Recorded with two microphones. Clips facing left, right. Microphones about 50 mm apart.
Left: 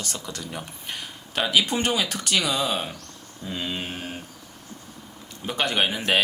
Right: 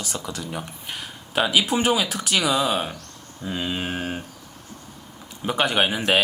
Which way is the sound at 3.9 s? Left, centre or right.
Right.